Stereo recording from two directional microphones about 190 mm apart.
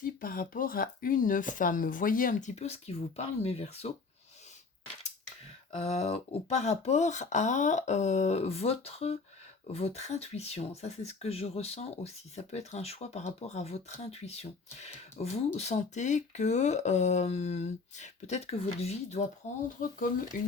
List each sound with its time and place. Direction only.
0.0 s speech: 45° left (ahead or behind)
5.8 s speech: 30° left (ahead or behind); by 20.5 s 45° left (ahead or behind)